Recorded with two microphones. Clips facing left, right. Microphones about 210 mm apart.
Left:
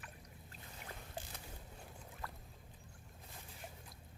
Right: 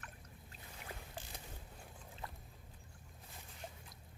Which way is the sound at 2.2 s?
20° right (ahead or behind).